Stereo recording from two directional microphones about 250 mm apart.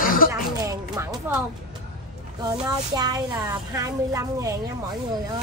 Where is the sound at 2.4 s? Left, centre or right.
Centre.